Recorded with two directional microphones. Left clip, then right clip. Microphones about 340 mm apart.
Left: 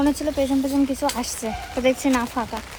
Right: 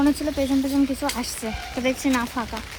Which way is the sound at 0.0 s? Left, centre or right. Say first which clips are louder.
Left 1 dB; centre.